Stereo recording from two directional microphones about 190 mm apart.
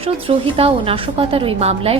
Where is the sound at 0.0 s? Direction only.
30° right (ahead or behind).